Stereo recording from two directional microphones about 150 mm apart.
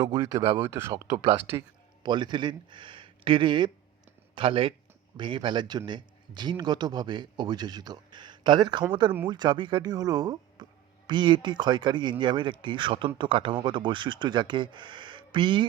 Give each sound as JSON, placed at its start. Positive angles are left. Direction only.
{"t": 0.1, "sound": "speech", "side_deg": -20}